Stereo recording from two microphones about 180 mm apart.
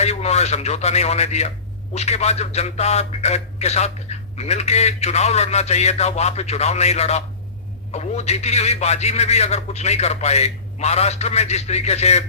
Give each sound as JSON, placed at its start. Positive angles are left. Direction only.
{"t": 0.0, "sound": "a man's voice", "side_deg": 35}